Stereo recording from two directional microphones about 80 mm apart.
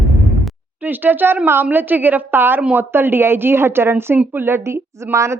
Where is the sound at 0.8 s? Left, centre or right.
Right.